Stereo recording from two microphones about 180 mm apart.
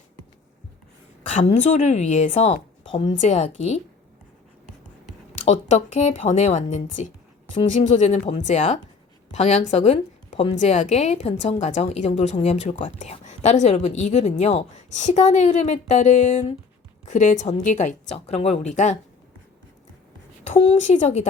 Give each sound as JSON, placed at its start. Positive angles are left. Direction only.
{"t": 1.3, "sound": "a woman's voice", "side_deg": 40}
{"t": 5.5, "sound": "a woman's voice", "side_deg": 35}
{"t": 20.4, "sound": "a woman's voice", "side_deg": 40}